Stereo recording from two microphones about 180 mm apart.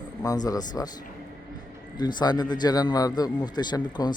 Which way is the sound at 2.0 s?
25° left (ahead or behind).